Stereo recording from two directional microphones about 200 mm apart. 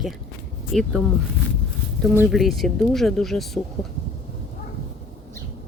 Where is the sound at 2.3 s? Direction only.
Centre (ahead or behind).